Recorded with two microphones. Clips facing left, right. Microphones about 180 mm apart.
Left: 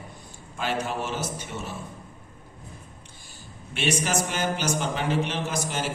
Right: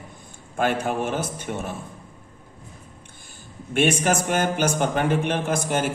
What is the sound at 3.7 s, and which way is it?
A man's voice, 50° right (ahead or behind).